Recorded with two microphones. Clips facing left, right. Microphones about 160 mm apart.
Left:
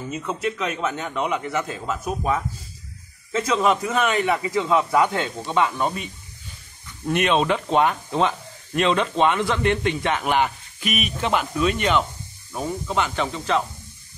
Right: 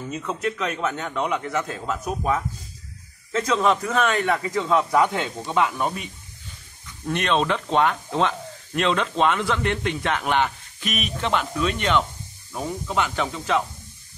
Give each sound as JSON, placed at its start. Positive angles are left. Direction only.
{"t": 0.1, "sound": "speech", "side_deg": 5}
{"t": 7.1, "sound": "speech", "side_deg": 10}